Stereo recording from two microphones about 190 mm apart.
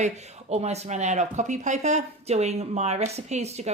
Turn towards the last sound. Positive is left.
turn(degrees=-35)  # may be behind; listen again after turning